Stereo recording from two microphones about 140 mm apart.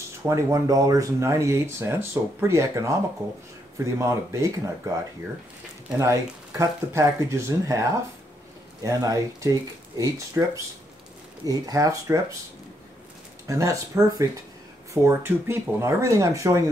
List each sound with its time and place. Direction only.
0.2 s speech: 20° right (ahead or behind)
5.9 s speech: 20° right (ahead or behind)
8.8 s speech: 20° right (ahead or behind)
13.5 s speech: 20° right (ahead or behind)